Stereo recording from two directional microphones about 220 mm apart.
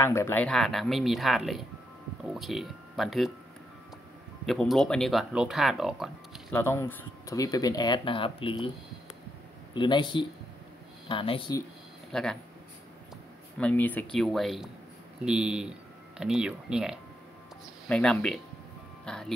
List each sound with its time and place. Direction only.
0.0 s speech: 10° left (ahead or behind)
4.5 s speech: centre (ahead or behind)
6.5 s speech: 10° left (ahead or behind)
9.8 s speech: 20° left (ahead or behind)
12.1 s speech: 5° left (ahead or behind)
13.6 s speech: 5° left (ahead or behind)
17.8 s speech: 5° left (ahead or behind)